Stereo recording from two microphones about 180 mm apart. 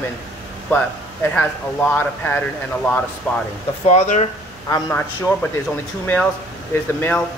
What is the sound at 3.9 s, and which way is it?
Speech, 40° left (ahead or behind).